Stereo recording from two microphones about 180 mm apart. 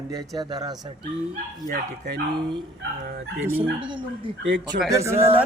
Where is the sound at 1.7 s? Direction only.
65° right (ahead or behind).